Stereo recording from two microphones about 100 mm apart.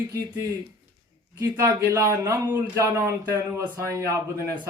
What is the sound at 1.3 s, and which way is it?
Speech, 35° right (ahead or behind).